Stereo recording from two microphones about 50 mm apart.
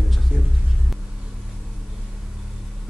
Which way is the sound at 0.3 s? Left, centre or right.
Centre.